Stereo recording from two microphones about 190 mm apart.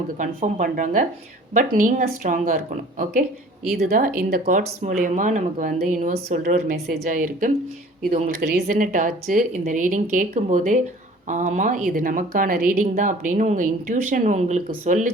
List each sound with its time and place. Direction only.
0.2 s speech: 40° right (ahead or behind)